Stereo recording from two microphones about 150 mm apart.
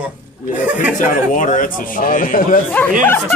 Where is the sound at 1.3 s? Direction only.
60° left (ahead or behind).